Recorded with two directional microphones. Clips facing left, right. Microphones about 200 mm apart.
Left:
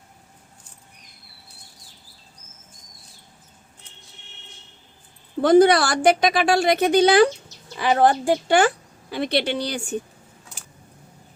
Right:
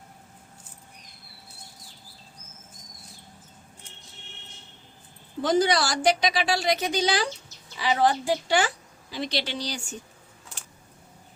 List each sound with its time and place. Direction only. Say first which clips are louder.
5.4 s a woman's voice: left 8 dB; 55° left (ahead or behind)